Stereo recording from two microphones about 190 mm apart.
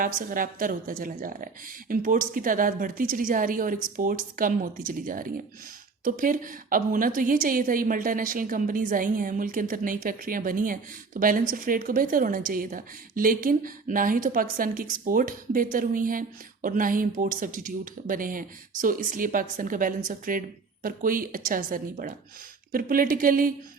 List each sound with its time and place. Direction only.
0.0 s a woman's voice: 45° right (ahead or behind)